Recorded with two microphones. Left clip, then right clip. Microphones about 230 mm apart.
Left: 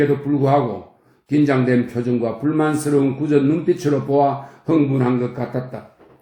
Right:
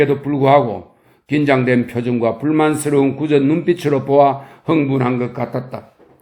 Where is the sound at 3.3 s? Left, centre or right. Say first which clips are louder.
Right 2 dB; right.